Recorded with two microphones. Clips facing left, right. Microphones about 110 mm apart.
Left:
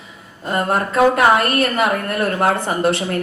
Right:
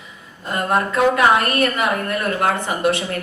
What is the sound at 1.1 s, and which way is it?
A woman's voice, 35° left (ahead or behind).